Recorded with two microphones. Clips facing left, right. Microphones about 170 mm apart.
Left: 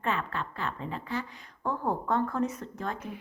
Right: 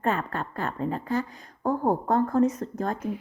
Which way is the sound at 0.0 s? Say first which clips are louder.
Right 4 dB; 45° right (ahead or behind).